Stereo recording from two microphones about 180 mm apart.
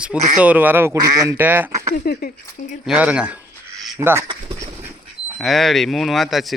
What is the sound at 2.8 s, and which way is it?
Speech, 5° right (ahead or behind).